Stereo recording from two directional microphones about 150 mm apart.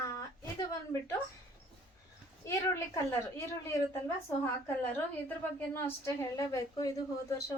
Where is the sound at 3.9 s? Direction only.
20° left (ahead or behind).